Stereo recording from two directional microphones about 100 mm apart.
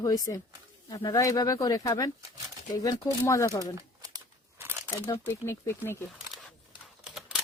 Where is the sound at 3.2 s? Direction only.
30° left (ahead or behind).